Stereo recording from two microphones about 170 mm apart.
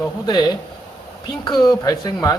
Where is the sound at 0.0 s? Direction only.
25° left (ahead or behind).